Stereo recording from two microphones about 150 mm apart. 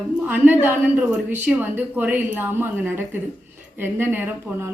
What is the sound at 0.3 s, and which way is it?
A woman's voice, 10° right (ahead or behind).